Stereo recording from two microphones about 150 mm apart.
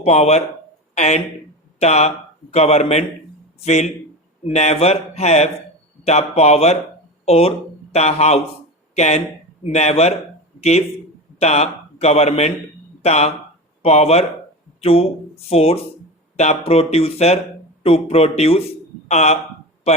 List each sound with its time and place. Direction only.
0.0 s speech: 45° left (ahead or behind)